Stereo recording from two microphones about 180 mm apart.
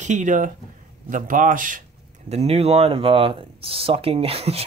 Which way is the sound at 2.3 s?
35° right (ahead or behind).